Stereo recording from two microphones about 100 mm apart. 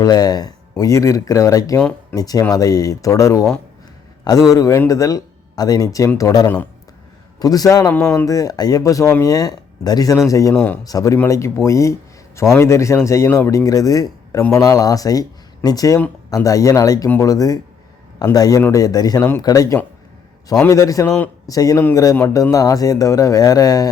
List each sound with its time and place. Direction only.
0.0 s a man's voice: 40° left (ahead or behind)
22.1 s a man's voice: 25° left (ahead or behind)
22.5 s speech: 35° left (ahead or behind)